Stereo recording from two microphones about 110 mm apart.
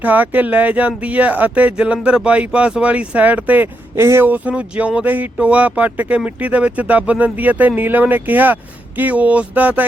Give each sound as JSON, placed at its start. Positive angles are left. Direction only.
{"t": 0.0, "sound": "speech", "side_deg": -15}